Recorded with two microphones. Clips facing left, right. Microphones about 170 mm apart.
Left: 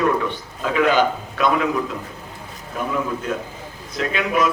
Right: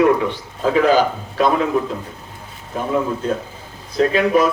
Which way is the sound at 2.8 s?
30° right (ahead or behind).